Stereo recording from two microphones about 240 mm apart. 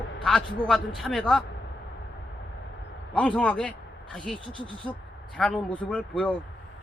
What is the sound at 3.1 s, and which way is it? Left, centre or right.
Speech, centre.